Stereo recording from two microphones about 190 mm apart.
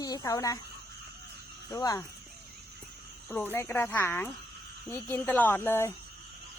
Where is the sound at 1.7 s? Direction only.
20° left (ahead or behind).